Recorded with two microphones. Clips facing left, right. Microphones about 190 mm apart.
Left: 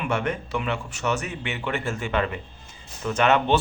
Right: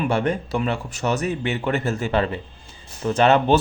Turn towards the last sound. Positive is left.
turn(degrees=-35)  # may be behind; listen again after turning